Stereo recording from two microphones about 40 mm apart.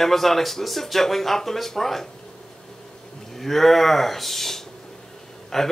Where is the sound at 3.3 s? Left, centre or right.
Centre.